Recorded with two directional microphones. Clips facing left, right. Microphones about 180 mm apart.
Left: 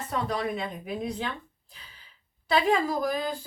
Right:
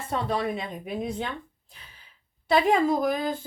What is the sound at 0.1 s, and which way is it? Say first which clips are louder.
A woman's voice: right 2 dB; 25° right (ahead or behind).